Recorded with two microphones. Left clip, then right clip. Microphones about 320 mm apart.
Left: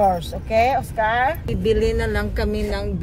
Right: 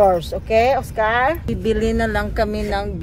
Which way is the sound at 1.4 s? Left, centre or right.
Centre.